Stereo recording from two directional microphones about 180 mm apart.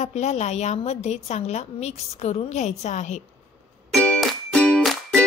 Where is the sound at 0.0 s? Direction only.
40° left (ahead or behind).